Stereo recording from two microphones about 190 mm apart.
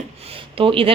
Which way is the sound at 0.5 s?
30° right (ahead or behind).